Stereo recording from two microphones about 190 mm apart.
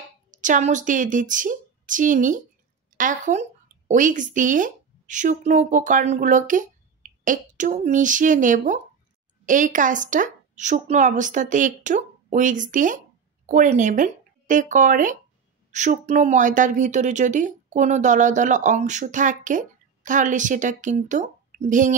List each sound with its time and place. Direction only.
0.3 s a woman's voice: 40° right (ahead or behind)